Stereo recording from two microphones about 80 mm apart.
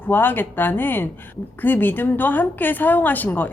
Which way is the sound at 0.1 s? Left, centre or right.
Left.